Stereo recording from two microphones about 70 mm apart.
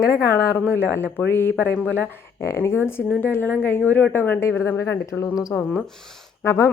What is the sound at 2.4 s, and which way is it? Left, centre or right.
Speech, left.